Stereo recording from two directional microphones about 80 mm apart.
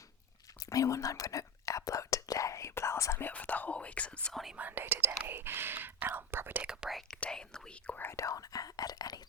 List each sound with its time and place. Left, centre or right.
0.6 s whispering: left
3.2 s speech: left
4.5 s speech: right
6.6 s speech: centre
7.2 s speech: centre
8.0 s speech: left